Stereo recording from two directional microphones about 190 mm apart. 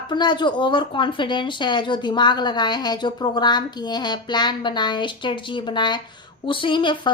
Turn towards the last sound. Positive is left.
turn(degrees=25)  # may be behind; listen again after turning